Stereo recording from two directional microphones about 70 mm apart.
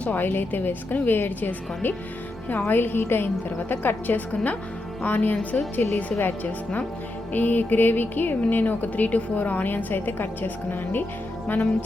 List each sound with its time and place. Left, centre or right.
0.0 s a woman's voice: left